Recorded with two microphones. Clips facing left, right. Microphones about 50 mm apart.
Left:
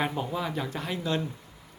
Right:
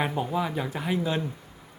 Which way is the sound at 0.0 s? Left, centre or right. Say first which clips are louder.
Right 2 dB; centre.